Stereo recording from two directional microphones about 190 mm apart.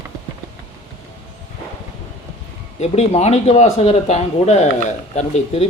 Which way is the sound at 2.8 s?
35° left (ahead or behind).